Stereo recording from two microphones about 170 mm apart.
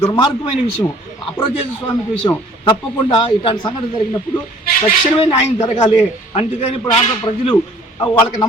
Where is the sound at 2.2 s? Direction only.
30° left (ahead or behind).